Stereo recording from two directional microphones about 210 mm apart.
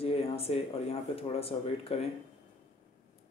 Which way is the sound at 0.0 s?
30° left (ahead or behind).